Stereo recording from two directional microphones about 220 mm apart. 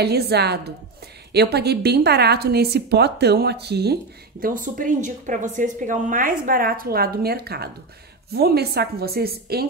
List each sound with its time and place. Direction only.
0.0 s a woman's voice: 50° right (ahead or behind)